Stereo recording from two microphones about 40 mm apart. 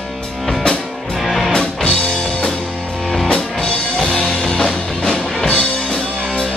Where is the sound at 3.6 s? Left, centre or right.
Left.